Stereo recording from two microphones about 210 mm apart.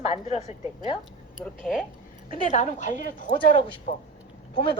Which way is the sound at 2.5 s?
35° left (ahead or behind).